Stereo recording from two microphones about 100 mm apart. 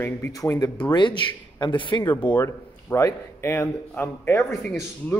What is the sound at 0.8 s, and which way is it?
Speech, 50° left (ahead or behind).